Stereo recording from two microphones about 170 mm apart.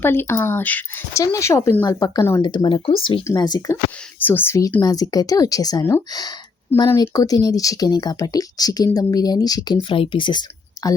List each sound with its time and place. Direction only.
0.0 s speech: 15° left (ahead or behind)
2.4 s speech: 25° left (ahead or behind)
4.2 s speech: 10° left (ahead or behind)